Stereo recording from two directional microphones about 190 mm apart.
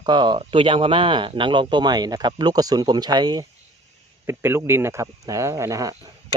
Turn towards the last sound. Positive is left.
turn(degrees=-15)  # may be behind; listen again after turning